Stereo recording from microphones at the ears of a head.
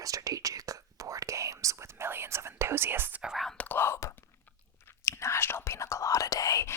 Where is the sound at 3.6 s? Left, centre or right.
Left.